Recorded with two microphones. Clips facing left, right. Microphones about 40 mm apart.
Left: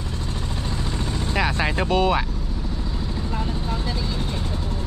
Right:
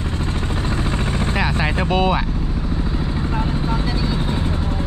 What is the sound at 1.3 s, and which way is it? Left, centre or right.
Vehicle, centre.